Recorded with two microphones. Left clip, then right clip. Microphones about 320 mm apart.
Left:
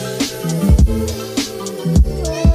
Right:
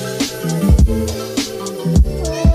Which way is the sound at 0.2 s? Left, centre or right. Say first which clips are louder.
Even; centre.